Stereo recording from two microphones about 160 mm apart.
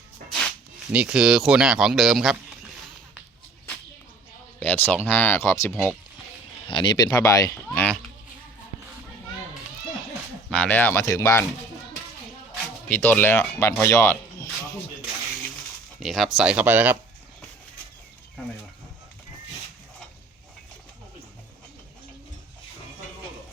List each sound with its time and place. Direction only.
0.3 s music: 5° left (ahead or behind)
0.9 s speech: 5° right (ahead or behind)
4.6 s speech: 10° left (ahead or behind)
6.7 s speech: 30° left (ahead or behind); by 7.9 s 10° left (ahead or behind)
10.5 s speech: 10° left (ahead or behind)
12.9 s speech: 10° left (ahead or behind)
16.0 s speech: centre (ahead or behind)